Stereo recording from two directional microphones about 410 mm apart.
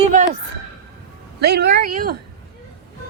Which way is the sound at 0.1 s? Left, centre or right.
Centre.